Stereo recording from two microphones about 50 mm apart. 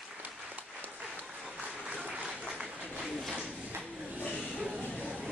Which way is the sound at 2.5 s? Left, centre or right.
Centre.